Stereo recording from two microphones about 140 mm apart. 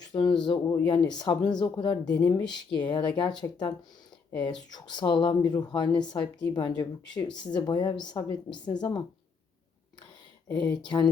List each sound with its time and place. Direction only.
0.0 s speech: 30° left (ahead or behind)
2.0 s speech: 10° left (ahead or behind)
2.3 s speech: 30° left (ahead or behind)
4.4 s speech: 30° left (ahead or behind)
10.8 s speech: 30° left (ahead or behind)